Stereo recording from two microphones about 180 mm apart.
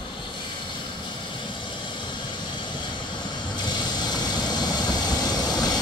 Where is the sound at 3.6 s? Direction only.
25° left (ahead or behind).